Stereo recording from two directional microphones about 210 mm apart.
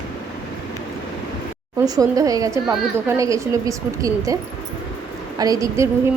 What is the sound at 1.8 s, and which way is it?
A woman's voice, 15° right (ahead or behind).